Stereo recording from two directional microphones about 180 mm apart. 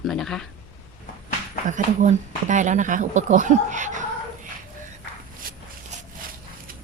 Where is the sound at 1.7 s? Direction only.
45° right (ahead or behind).